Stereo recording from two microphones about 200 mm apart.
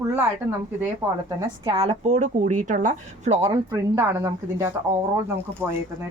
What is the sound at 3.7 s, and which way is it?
Speech, 15° right (ahead or behind).